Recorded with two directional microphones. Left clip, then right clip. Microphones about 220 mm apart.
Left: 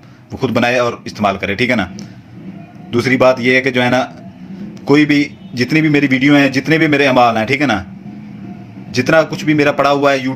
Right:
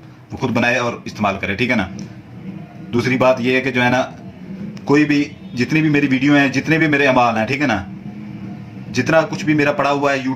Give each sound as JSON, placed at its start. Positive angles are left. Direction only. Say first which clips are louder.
{"t": 0.3, "sound": "a man's voice", "louder": "left 3 dB", "side_deg": 35}
{"t": 5.5, "sound": "a man's voice", "louder": "left 3 dB", "side_deg": 35}
{"t": 8.9, "sound": "a man's voice", "louder": "left 3 dB", "side_deg": 35}